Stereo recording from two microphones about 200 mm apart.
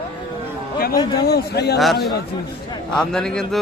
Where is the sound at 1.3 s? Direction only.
55° left (ahead or behind).